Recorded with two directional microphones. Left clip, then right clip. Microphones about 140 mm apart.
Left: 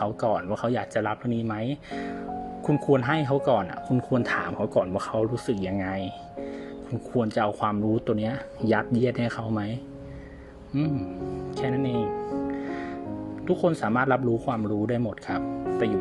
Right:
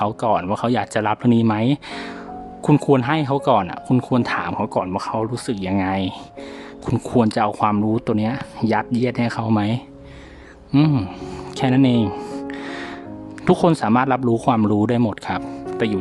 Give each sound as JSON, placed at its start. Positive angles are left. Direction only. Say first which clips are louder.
{"t": 0.0, "sound": "speech", "louder": "right 6 dB", "side_deg": -35}
{"t": 3.0, "sound": "speech", "louder": "right 5 dB", "side_deg": -20}
{"t": 4.2, "sound": "speech", "louder": "right 5 dB", "side_deg": -15}
{"t": 7.2, "sound": "speech", "louder": "right 7 dB", "side_deg": -25}
{"t": 9.4, "sound": "speech", "louder": "right 10 dB", "side_deg": -40}
{"t": 10.7, "sound": "music", "louder": "right 10 dB", "side_deg": -55}
{"t": 11.5, "sound": "speech", "louder": "right 10 dB", "side_deg": -40}
{"t": 11.9, "sound": "music", "louder": "right 4 dB", "side_deg": 0}
{"t": 12.5, "sound": "music", "louder": "right 2 dB", "side_deg": -45}
{"t": 13.4, "sound": "speech", "louder": "right 9 dB", "side_deg": -50}
{"t": 13.7, "sound": "speech", "louder": "right 3 dB", "side_deg": -25}
{"t": 14.3, "sound": "speech", "louder": "right 9 dB", "side_deg": -40}